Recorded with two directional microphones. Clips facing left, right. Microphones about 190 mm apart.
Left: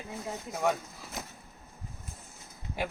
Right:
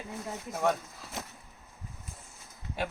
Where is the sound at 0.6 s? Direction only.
5° left (ahead or behind).